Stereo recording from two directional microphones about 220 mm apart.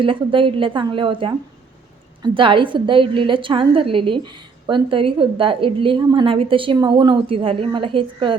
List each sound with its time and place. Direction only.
0.0 s a woman's voice: 25° right (ahead or behind)